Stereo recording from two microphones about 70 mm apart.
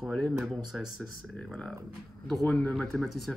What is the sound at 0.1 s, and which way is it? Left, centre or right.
Speech, centre.